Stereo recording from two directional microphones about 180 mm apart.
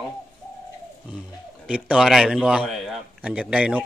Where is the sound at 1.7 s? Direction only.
5° right (ahead or behind).